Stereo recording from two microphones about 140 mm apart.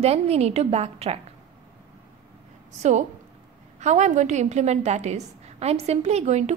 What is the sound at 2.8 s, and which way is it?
A woman's voice, 55° right (ahead or behind).